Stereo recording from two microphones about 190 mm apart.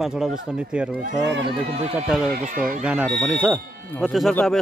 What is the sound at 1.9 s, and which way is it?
Speech, 5° right (ahead or behind).